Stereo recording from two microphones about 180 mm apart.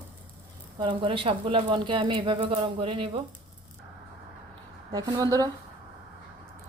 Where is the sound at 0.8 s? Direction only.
30° right (ahead or behind).